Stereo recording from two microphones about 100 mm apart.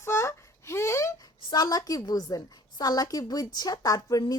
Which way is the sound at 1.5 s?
40° left (ahead or behind).